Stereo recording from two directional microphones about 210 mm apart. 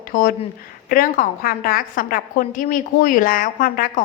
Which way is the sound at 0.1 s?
45° left (ahead or behind).